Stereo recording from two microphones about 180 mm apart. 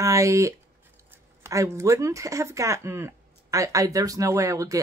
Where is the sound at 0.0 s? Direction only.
15° right (ahead or behind).